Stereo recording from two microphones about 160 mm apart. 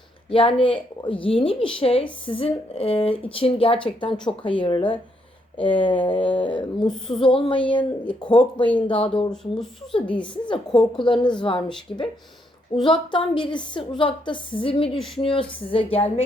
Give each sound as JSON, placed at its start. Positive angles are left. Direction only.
{"t": 0.3, "sound": "a woman's voice", "side_deg": 35}
{"t": 8.9, "sound": "a woman's voice", "side_deg": 35}
{"t": 9.3, "sound": "speech", "side_deg": 5}
{"t": 10.2, "sound": "a woman's voice", "side_deg": 30}
{"t": 14.9, "sound": "speech", "side_deg": 0}
{"t": 15.2, "sound": "a woman's voice", "side_deg": 35}